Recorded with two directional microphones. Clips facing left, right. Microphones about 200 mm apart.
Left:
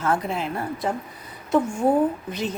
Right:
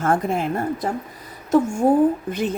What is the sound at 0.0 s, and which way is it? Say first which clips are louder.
Speech: right 4 dB; 50° right (ahead or behind).